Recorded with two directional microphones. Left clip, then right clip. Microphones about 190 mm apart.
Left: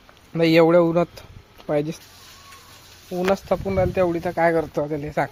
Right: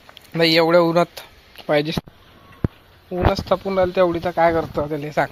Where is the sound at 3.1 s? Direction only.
5° left (ahead or behind).